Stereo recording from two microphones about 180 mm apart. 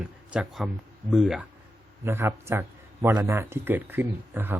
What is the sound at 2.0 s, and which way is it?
A man's voice, 15° right (ahead or behind).